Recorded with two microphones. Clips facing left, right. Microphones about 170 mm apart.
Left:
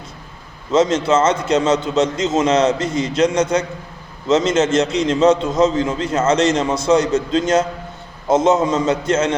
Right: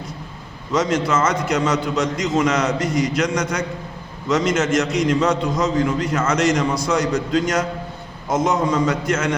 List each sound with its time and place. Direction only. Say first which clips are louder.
0.7 s a man's voice: left 4 dB; 25° left (ahead or behind)